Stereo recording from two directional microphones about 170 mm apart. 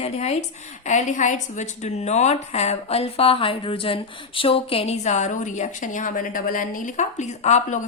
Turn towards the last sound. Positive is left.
turn(degrees=45)  # may be behind; listen again after turning